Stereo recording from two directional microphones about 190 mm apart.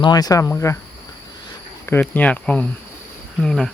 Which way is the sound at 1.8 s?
10° left (ahead or behind).